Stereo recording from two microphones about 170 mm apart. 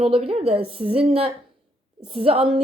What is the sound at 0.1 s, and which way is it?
Speech, 35° right (ahead or behind).